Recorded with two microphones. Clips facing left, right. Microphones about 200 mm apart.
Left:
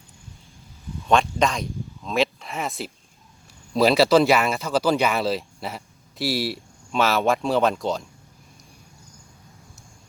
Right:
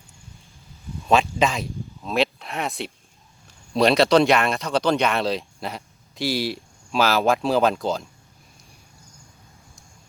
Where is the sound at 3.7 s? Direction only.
Centre (ahead or behind).